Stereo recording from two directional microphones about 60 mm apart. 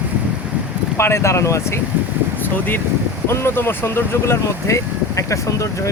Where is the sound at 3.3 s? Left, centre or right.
Left.